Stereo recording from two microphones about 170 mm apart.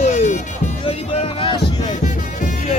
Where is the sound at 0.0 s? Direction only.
45° left (ahead or behind).